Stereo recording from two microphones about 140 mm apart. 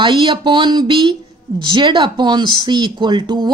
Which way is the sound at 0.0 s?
35° right (ahead or behind).